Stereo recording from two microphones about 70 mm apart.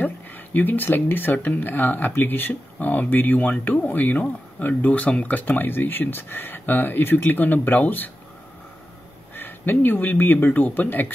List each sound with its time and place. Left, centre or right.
0.0 s speech: left
9.3 s speech: left